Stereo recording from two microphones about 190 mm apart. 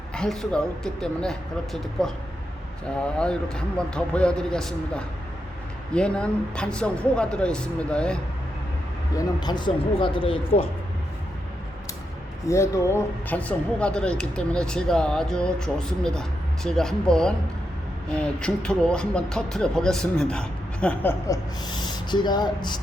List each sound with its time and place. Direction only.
0.1 s speech: 5° left (ahead or behind)
9.1 s speech: 20° left (ahead or behind)
12.5 s speech: 15° left (ahead or behind)
22.1 s speech: 20° left (ahead or behind)